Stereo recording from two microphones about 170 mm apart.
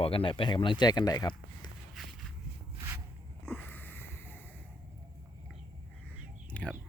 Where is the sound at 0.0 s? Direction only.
35° left (ahead or behind).